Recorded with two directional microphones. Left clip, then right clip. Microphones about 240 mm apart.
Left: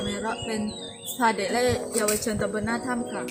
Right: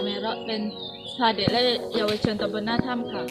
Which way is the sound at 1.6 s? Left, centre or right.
Centre.